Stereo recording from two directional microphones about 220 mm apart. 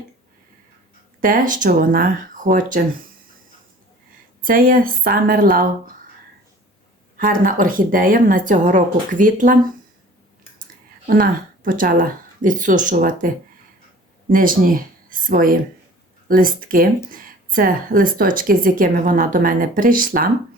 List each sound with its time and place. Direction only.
1.2 s a woman's voice: 40° right (ahead or behind)
4.4 s a woman's voice: 40° right (ahead or behind)
7.2 s a woman's voice: 40° right (ahead or behind)
11.0 s a woman's voice: 40° right (ahead or behind)